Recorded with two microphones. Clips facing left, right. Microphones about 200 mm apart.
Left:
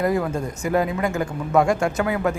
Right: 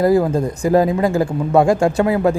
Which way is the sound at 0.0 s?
35° right (ahead or behind).